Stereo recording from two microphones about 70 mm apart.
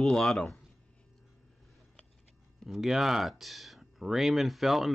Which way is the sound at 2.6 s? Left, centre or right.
Centre.